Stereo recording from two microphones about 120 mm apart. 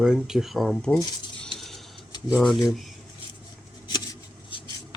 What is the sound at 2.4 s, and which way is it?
Speech, centre (ahead or behind).